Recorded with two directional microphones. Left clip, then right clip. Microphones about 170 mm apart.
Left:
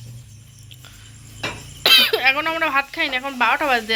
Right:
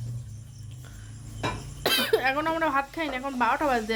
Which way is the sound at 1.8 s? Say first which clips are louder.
Left 10 dB; 15° right (ahead or behind).